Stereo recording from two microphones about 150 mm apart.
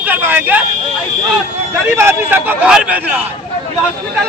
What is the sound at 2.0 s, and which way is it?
Speech, 15° right (ahead or behind).